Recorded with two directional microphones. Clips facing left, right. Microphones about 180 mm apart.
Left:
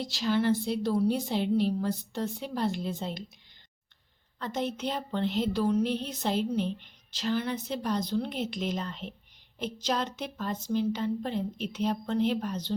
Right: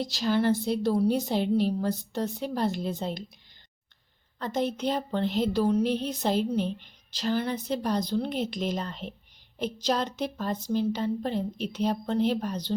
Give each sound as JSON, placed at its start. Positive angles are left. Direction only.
{"t": 0.0, "sound": "a woman's voice", "side_deg": -40}
{"t": 4.4, "sound": "a woman's voice", "side_deg": -40}